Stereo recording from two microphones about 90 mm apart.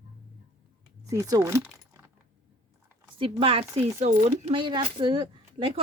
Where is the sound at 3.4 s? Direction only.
90° right.